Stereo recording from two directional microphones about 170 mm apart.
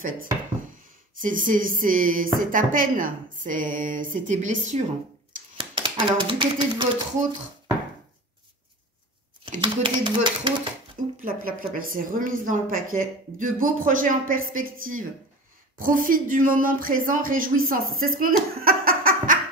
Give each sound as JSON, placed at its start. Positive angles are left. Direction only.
{"t": 1.2, "sound": "speech", "side_deg": -50}
{"t": 5.6, "sound": "speech", "side_deg": -30}
{"t": 9.6, "sound": "speech", "side_deg": -30}
{"t": 11.1, "sound": "a woman's voice", "side_deg": -55}